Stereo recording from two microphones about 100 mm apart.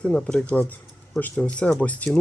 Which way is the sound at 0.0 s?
10° left (ahead or behind).